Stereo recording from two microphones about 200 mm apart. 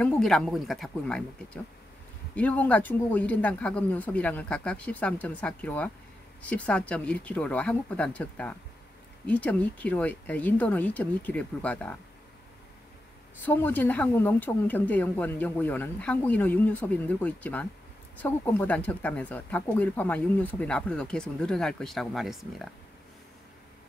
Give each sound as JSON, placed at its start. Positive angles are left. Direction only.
{"t": 0.0, "sound": "speech", "side_deg": 5}
{"t": 13.4, "sound": "speech", "side_deg": 10}